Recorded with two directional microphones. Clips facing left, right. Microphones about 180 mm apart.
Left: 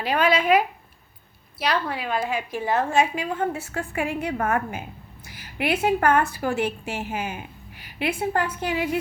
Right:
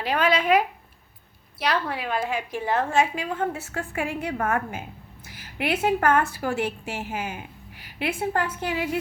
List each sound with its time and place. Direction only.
0.0 s a woman's voice: 10° left (ahead or behind)